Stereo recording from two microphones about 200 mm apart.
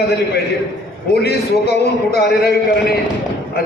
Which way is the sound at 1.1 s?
55° left (ahead or behind).